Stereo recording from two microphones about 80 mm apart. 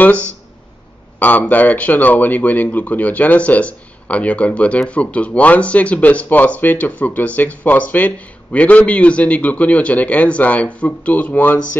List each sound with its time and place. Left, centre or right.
0.0 s a man's voice: centre